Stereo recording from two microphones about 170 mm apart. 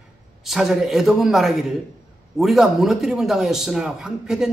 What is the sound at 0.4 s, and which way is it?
A man's voice, centre (ahead or behind).